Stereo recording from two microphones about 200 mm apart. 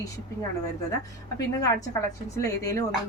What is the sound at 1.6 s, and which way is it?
Speech, 15° left (ahead or behind).